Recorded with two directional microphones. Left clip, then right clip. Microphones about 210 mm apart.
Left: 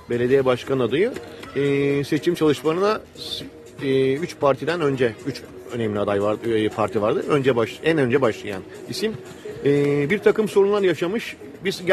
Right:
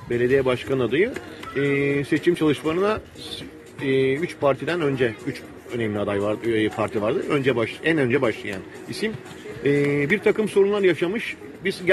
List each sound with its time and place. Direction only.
0.1 s speech: 15° left (ahead or behind)